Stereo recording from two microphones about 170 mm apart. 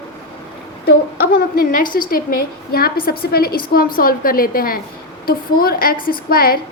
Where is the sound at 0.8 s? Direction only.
65° left (ahead or behind).